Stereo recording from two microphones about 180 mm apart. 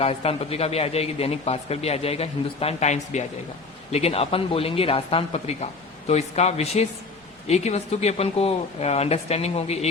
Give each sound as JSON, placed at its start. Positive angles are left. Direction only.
{"t": 0.0, "sound": "speech", "side_deg": 35}